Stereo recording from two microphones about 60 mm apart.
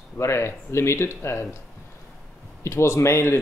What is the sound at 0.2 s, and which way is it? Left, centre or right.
Speech, left.